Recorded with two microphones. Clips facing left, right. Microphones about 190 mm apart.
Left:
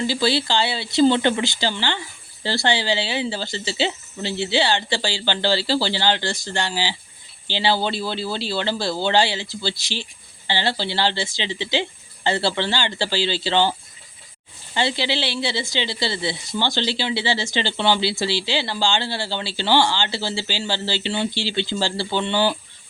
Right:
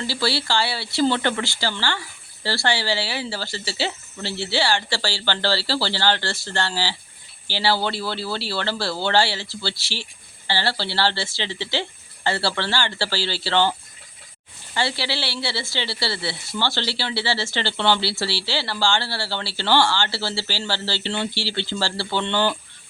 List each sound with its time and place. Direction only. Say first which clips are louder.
0.0 s speech: left 4 dB; 20° left (ahead or behind)